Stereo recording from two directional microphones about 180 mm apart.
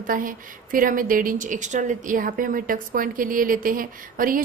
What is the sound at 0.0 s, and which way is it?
A woman's voice, 50° right (ahead or behind).